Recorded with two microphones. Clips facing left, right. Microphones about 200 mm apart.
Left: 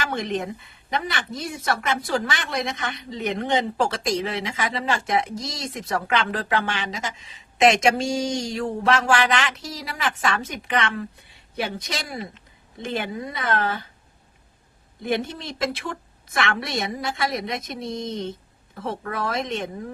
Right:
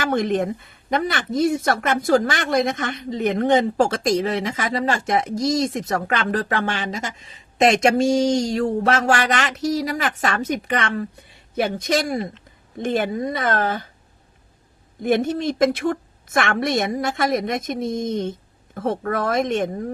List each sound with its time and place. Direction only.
0.0 s speech: 50° right (ahead or behind)
15.0 s speech: 45° right (ahead or behind)